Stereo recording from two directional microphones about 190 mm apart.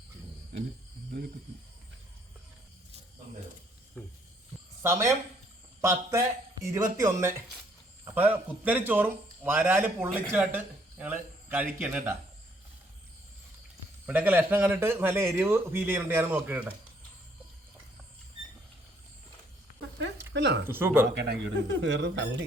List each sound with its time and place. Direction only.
4.8 s a man's voice: 15° right (ahead or behind)
14.1 s a man's voice: 10° right (ahead or behind)
20.0 s a sound: 70° right (ahead or behind)
20.7 s a man's voice: 10° right (ahead or behind)
21.2 s speech: 65° right (ahead or behind)